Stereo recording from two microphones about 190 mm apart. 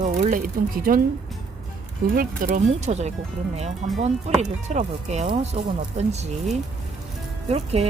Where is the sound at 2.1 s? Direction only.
45° right (ahead or behind).